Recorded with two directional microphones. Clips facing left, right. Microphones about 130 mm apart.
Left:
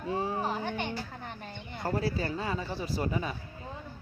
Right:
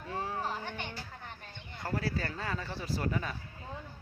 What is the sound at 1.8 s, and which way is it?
Speech, 20° left (ahead or behind).